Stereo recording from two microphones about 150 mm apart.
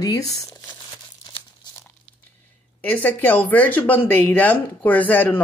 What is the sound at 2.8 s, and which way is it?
Speech, 10° left (ahead or behind).